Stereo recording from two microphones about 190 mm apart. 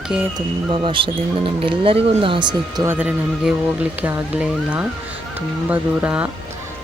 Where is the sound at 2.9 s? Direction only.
5° right (ahead or behind).